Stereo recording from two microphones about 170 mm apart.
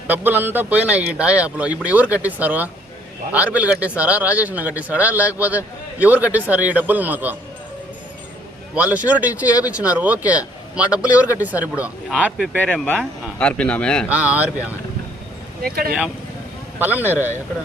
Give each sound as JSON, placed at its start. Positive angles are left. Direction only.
{"t": 0.1, "sound": "speech", "side_deg": -10}
{"t": 8.7, "sound": "speech", "side_deg": -10}
{"t": 12.8, "sound": "speech", "side_deg": 10}
{"t": 14.1, "sound": "speech", "side_deg": -10}
{"t": 15.6, "sound": "speech", "side_deg": -60}
{"t": 16.7, "sound": "speech", "side_deg": -10}